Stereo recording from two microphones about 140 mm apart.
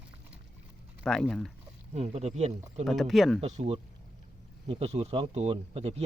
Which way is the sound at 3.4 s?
45° right (ahead or behind).